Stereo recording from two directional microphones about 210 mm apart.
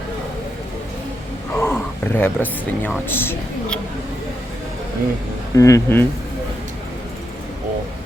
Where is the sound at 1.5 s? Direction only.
10° left (ahead or behind).